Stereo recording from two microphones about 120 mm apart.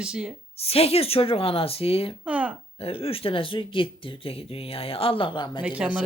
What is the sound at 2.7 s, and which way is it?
Speech, 55° left (ahead or behind).